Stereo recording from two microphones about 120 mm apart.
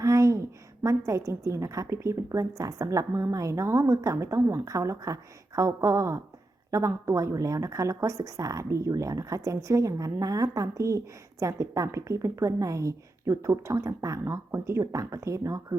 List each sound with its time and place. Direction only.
0.0 s a woman's voice: 25° right (ahead or behind)